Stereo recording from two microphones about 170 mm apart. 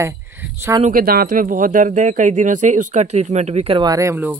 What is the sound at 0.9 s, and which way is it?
Speech, 60° right (ahead or behind).